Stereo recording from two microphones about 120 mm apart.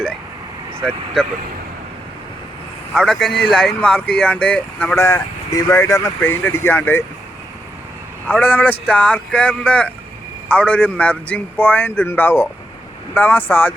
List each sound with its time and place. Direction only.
0.9 s speech: 5° left (ahead or behind)
2.9 s speech: 5° left (ahead or behind)
4.9 s speech: 25° left (ahead or behind)
8.3 s speech: 15° left (ahead or behind)